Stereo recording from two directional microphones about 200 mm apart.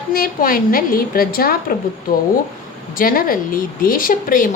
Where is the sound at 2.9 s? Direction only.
45° left (ahead or behind).